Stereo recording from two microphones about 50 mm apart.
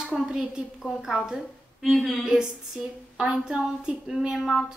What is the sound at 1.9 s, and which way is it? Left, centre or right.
Speech, centre.